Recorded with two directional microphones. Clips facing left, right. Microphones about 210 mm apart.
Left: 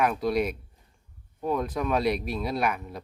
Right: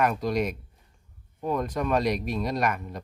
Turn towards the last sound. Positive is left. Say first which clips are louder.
# right 1 dB
turn(degrees=5)  # may be behind; listen again after turning